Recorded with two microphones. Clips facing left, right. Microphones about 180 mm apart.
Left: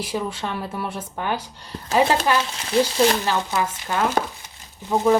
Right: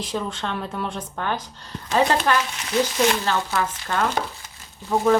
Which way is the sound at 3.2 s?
15° left (ahead or behind).